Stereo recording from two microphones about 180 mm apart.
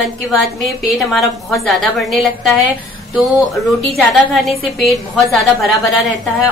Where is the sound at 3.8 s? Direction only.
Centre (ahead or behind).